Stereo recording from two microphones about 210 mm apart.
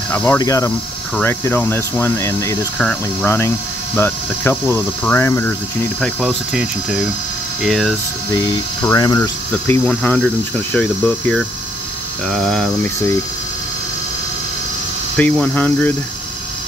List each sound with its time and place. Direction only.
0.1 s speech: 10° left (ahead or behind)
8.8 s speech: 20° left (ahead or behind)
9.5 s speech: 5° left (ahead or behind)
15.1 s speech: 5° left (ahead or behind)